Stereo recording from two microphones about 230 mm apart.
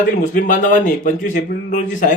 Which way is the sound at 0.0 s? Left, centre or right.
Left.